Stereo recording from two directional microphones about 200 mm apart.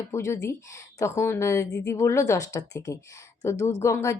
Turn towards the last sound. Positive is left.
turn(degrees=15)  # may be behind; listen again after turning